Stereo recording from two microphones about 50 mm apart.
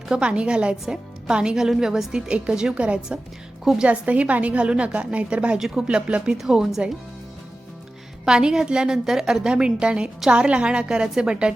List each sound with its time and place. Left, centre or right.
0.1 s a woman's voice: centre
3.6 s a woman's voice: centre
3.8 s a woman's voice: right
5.5 s a woman's voice: centre
5.9 s a woman's voice: right
6.3 s a woman's voice: centre
8.2 s a woman's voice: centre